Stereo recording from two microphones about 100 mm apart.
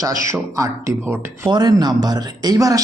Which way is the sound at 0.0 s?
35° right (ahead or behind).